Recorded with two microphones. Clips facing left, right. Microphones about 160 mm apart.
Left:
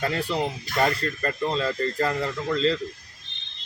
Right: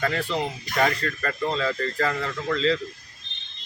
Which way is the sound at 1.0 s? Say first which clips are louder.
Left 1 dB; 30° left (ahead or behind).